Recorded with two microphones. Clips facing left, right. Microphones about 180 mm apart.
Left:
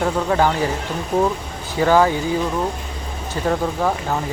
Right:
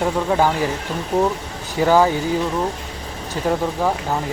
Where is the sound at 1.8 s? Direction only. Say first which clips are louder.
Even; 10° right (ahead or behind).